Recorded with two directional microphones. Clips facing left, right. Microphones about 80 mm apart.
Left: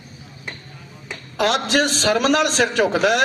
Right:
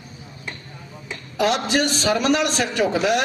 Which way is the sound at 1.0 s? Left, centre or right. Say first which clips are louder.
Even; left.